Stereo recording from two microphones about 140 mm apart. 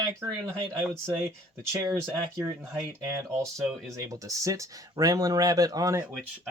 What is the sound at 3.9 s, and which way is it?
Speech, 25° right (ahead or behind).